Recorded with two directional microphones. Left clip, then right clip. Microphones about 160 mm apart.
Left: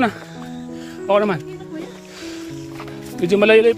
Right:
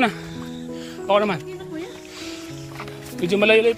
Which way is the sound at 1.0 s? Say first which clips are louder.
Left 2 dB; 60° left (ahead or behind).